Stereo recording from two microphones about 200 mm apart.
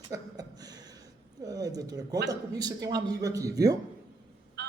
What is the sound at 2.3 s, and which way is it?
A man's voice, 20° right (ahead or behind).